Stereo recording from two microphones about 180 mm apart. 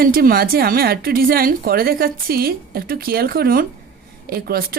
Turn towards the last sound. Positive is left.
turn(degrees=-55)  # may be behind; listen again after turning